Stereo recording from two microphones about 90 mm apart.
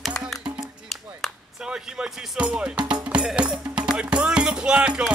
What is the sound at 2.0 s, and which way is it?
Music, 15° right (ahead or behind).